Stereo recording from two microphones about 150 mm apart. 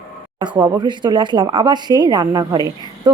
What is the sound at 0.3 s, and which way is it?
A woman's voice, 30° right (ahead or behind).